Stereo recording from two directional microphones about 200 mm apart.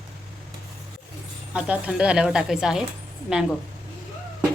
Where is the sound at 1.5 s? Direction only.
5° right (ahead or behind).